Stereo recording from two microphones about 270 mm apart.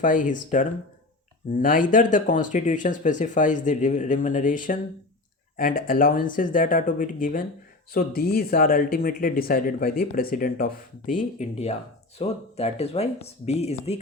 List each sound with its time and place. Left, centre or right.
0.0 s speech: left
1.5 s speech: left